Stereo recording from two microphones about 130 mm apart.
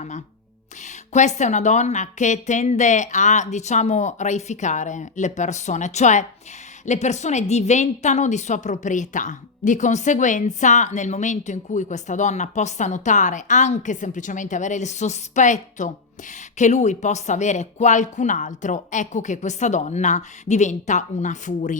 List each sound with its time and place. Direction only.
0.8 s a woman's voice: 65° left (ahead or behind)